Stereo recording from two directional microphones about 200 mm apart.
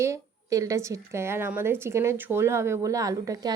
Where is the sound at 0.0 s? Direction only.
15° right (ahead or behind).